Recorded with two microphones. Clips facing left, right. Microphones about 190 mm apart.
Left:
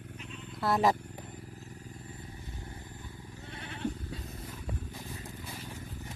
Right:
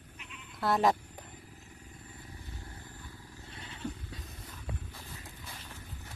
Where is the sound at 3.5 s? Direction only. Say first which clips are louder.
Left 5 dB; 65° left (ahead or behind).